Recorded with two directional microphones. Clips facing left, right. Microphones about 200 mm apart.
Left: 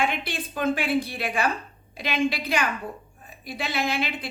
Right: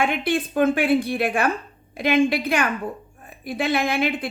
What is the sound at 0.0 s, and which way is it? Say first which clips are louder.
A woman's voice: right 6 dB; 55° right (ahead or behind).